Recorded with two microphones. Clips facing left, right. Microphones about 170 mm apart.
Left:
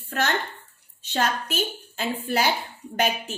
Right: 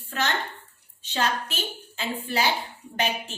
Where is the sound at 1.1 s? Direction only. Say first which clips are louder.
Left 2 dB; 45° left (ahead or behind).